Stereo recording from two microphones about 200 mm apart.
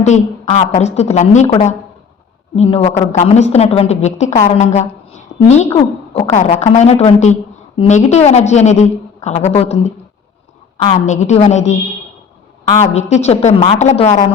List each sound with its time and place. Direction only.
0.0 s a woman's voice: 35° left (ahead or behind)
11.0 s a woman's voice: 35° left (ahead or behind)